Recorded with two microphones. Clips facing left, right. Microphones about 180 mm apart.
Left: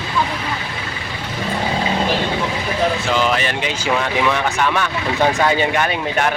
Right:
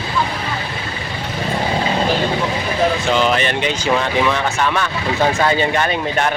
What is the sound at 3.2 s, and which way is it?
Speech, 5° left (ahead or behind).